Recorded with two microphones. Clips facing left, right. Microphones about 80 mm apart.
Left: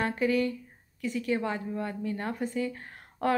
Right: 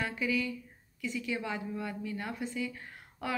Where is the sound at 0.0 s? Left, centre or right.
Left.